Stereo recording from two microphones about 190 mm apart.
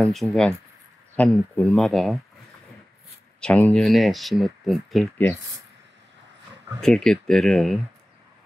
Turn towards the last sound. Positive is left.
turn(degrees=0)  # may be behind; listen again after turning